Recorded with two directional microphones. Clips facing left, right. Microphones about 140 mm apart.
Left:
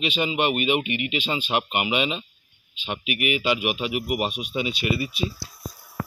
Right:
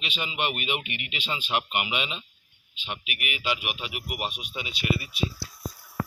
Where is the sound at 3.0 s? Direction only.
20° left (ahead or behind).